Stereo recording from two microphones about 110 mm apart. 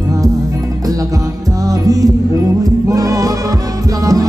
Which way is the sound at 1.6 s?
30° right (ahead or behind).